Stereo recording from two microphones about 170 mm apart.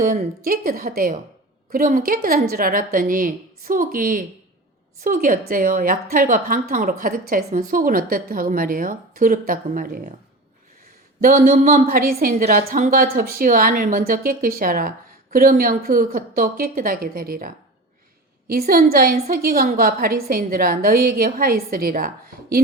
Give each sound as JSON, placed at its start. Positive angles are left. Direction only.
{"t": 0.0, "sound": "a woman's voice", "side_deg": -55}
{"t": 11.2, "sound": "a woman's voice", "side_deg": -55}